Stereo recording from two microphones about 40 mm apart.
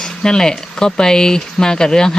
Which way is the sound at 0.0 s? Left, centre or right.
Centre.